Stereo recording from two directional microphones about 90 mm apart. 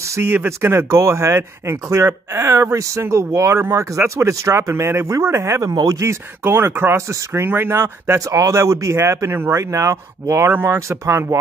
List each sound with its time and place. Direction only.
0.0 s speech: 30° right (ahead or behind)
6.4 s speech: 25° right (ahead or behind)